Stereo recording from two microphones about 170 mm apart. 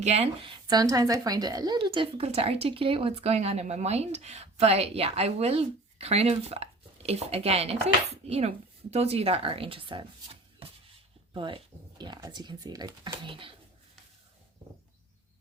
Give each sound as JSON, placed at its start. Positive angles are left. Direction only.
{"t": 0.0, "sound": "speech", "side_deg": -40}